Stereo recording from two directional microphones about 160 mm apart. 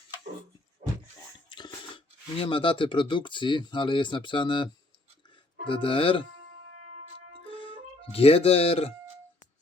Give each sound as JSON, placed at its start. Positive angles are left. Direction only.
{"t": 1.5, "sound": "a sound", "side_deg": 30}
{"t": 2.4, "sound": "speech", "side_deg": 35}
{"t": 7.4, "sound": "music", "side_deg": 35}
{"t": 8.1, "sound": "speech", "side_deg": 35}